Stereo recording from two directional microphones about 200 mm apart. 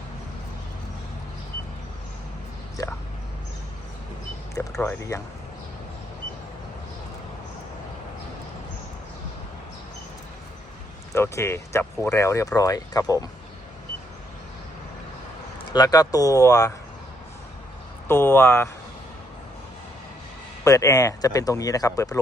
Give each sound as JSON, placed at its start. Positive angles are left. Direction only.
{"t": 4.5, "sound": "speech", "side_deg": 15}
{"t": 11.1, "sound": "speech", "side_deg": 15}
{"t": 15.7, "sound": "speech", "side_deg": 20}
{"t": 18.1, "sound": "speech", "side_deg": 10}
{"t": 20.7, "sound": "speech", "side_deg": 15}